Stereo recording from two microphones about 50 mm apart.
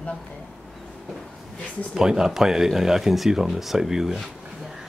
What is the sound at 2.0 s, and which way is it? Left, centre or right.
Speech, centre.